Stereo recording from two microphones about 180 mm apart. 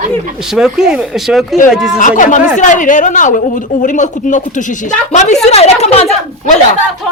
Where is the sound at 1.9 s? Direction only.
45° left (ahead or behind).